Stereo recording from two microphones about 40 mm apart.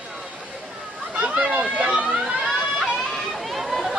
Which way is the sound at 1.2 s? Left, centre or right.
Right.